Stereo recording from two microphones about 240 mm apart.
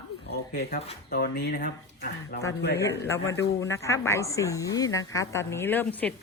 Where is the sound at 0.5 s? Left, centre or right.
Left.